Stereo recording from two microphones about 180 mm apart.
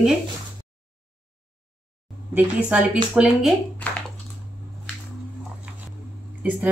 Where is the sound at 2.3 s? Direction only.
5° right (ahead or behind).